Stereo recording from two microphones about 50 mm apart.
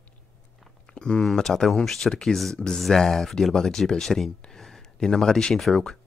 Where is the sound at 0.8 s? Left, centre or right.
Centre.